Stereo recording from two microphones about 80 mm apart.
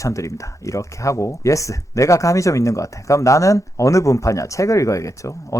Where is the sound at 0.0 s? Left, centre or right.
Left.